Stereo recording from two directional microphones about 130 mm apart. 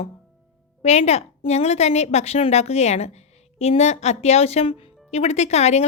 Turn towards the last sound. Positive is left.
turn(degrees=55)  # may be behind; listen again after turning